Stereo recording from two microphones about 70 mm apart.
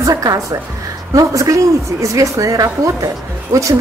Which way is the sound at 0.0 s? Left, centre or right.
Right.